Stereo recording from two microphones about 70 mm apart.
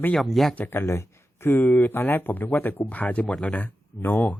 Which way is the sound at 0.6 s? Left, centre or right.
Left.